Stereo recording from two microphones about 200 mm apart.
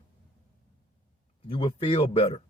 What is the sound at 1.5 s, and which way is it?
Speech, 25° left (ahead or behind).